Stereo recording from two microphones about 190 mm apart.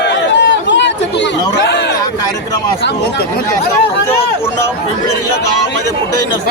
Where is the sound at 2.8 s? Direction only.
55° left (ahead or behind).